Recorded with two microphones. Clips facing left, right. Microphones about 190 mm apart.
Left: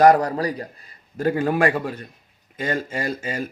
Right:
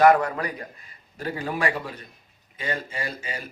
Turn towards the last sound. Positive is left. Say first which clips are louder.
# left 7 dB
turn(degrees=45)  # may be behind; listen again after turning